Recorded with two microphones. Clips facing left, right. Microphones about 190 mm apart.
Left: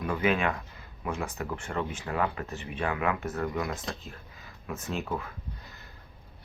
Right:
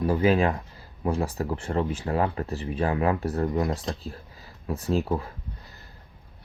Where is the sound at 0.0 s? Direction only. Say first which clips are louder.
Right 6 dB; 35° right (ahead or behind).